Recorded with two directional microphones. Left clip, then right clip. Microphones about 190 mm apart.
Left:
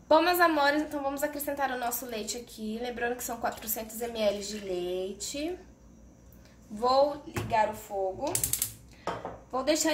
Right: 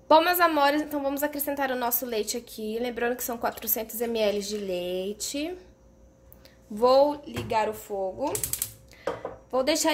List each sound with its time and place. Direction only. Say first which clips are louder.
0.1 s a woman's voice: right 3 dB; 45° right (ahead or behind)
6.8 s speech: right 5 dB; 55° right (ahead or behind)
9.5 s a woman's voice: right 3 dB; 45° right (ahead or behind)